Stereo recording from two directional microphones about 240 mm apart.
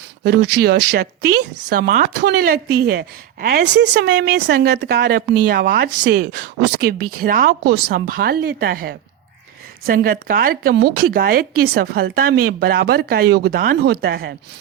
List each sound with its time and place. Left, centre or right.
0.3 s a woman's voice: right